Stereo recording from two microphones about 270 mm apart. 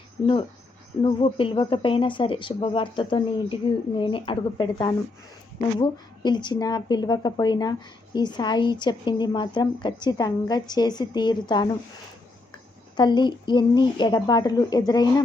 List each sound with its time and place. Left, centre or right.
1.0 s a woman's voice: centre
13.0 s a woman's voice: centre